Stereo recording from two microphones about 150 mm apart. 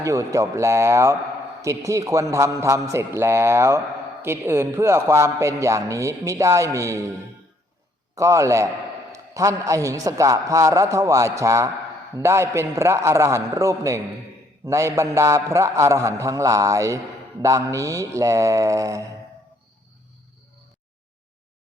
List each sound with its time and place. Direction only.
0.0 s a man's voice: 20° right (ahead or behind)
8.1 s a man's voice: 20° right (ahead or behind)